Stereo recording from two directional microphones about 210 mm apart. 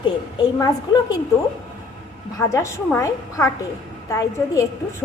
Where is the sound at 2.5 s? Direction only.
15° left (ahead or behind).